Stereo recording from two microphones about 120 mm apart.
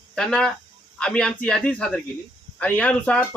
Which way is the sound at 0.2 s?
5° left (ahead or behind).